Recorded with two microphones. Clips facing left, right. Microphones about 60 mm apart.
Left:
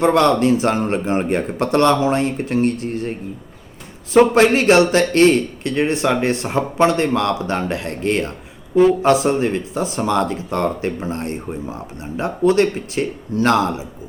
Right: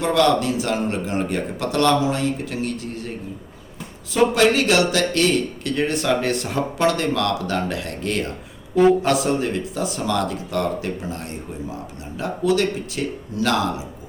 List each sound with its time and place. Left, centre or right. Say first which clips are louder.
0.0 s speech: left 4 dB; left
4.1 s a man's voice: left 5 dB; left